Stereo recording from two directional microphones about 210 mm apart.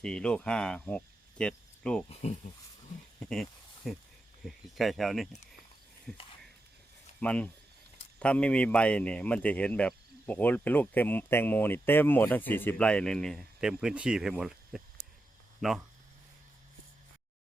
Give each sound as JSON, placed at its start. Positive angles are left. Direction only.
{"t": 0.0, "sound": "speech", "side_deg": 5}
{"t": 3.2, "sound": "snake", "side_deg": 5}
{"t": 4.4, "sound": "speech", "side_deg": 0}
{"t": 15.0, "sound": "a sound", "side_deg": -35}